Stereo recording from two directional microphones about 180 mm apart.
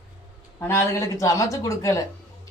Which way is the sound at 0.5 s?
15° left (ahead or behind).